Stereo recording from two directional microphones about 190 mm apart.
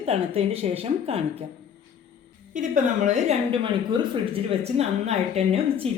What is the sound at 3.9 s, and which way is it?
Speech, 25° right (ahead or behind).